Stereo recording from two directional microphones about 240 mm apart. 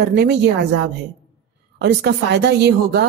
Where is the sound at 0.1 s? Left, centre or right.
Right.